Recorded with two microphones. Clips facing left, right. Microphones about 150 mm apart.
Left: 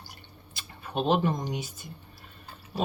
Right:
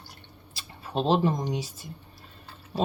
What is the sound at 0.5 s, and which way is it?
Speech, 30° right (ahead or behind).